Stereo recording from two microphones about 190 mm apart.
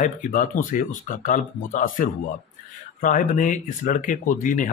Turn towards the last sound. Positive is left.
turn(degrees=45)  # may be behind; listen again after turning